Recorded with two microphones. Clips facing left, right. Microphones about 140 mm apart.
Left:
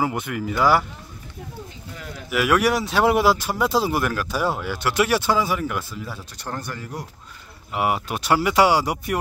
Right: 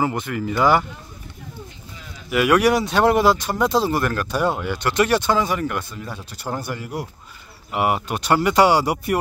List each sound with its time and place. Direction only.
0.0 s speech: 5° left (ahead or behind)
2.0 s a sound: 65° left (ahead or behind)
2.2 s speech: centre (ahead or behind)
7.7 s speech: centre (ahead or behind)